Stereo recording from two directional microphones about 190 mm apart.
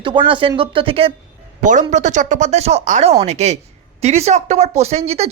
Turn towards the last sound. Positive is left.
turn(degrees=-35)  # may be behind; listen again after turning